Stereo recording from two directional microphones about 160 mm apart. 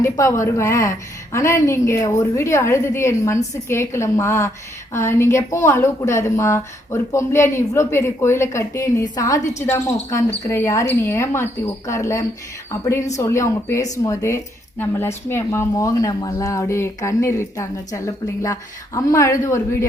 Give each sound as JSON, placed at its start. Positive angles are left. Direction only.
{"t": 0.0, "sound": "a woman's voice", "side_deg": 20}